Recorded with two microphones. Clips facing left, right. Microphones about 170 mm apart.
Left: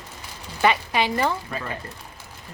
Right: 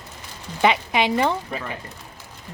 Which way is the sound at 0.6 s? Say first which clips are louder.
Right 2 dB; 15° right (ahead or behind).